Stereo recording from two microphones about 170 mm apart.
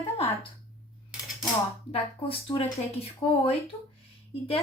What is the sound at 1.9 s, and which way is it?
Speech, 35° left (ahead or behind).